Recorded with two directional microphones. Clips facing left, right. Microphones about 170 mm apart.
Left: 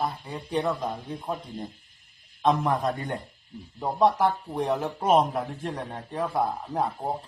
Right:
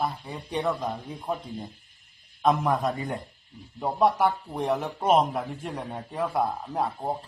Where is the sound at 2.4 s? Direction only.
5° right (ahead or behind).